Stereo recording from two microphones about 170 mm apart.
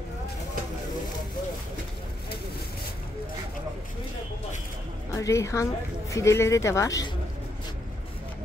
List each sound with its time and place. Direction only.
5.1 s speech: 15° left (ahead or behind)